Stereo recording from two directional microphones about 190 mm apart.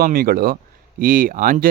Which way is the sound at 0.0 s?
50° right (ahead or behind).